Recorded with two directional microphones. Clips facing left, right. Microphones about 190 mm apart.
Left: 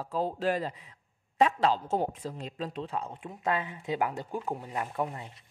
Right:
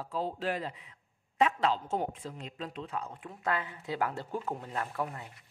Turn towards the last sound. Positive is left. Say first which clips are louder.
# left 3 dB
turn(degrees=20)  # may be behind; listen again after turning